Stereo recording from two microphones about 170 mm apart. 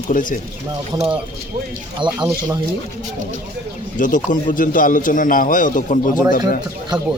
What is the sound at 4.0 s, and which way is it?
A man's voice, 50° left (ahead or behind).